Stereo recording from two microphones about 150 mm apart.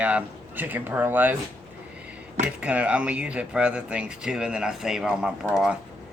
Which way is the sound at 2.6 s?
10° right (ahead or behind).